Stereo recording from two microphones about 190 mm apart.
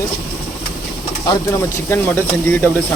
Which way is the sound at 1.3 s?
15° left (ahead or behind).